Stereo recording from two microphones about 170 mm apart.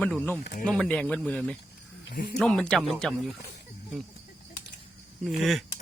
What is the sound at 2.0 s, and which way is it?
Speech, 75° left (ahead or behind).